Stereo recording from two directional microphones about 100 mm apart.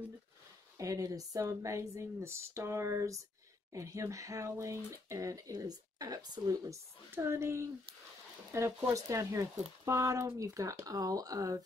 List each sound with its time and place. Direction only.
0.7 s speech: 35° right (ahead or behind)